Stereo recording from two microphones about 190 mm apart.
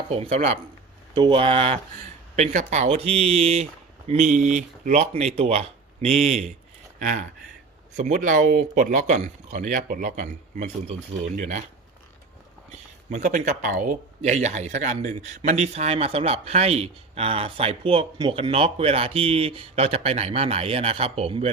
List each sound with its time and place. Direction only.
0.2 s speech: 35° right (ahead or behind)
13.1 s speech: 40° right (ahead or behind)